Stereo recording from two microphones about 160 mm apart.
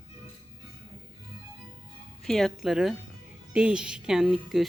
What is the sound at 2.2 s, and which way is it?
Speech, centre (ahead or behind).